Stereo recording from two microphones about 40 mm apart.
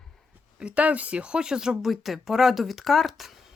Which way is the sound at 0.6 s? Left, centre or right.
Right.